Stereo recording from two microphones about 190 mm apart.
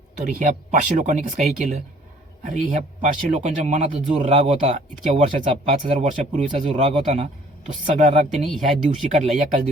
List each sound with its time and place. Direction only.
0.2 s speech: 45° right (ahead or behind)
8.4 s speech: centre (ahead or behind)
9.1 s speech: 40° right (ahead or behind)